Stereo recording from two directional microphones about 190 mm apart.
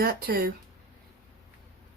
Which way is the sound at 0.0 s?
50° right (ahead or behind).